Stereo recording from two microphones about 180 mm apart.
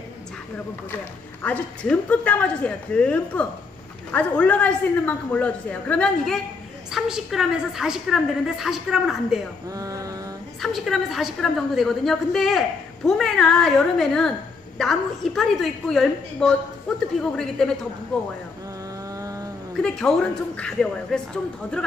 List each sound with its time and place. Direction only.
1.4 s a woman's voice: 5° left (ahead or behind)
9.7 s mantra: 20° right (ahead or behind)
10.6 s a woman's voice: centre (ahead or behind)
19.1 s cat: 20° right (ahead or behind)
19.8 s a woman's voice: 5° left (ahead or behind)